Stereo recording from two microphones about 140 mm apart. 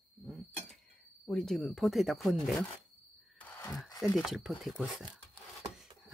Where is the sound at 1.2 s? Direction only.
Centre (ahead or behind).